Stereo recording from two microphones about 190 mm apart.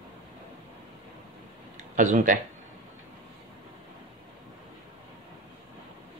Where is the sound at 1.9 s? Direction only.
40° right (ahead or behind).